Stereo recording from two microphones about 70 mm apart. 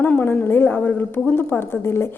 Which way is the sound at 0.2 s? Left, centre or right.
Left.